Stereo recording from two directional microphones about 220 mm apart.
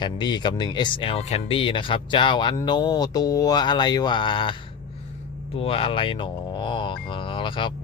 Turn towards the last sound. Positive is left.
turn(degrees=20)  # may be behind; listen again after turning